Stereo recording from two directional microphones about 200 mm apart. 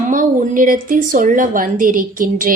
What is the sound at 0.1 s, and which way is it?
A woman's voice, 40° right (ahead or behind).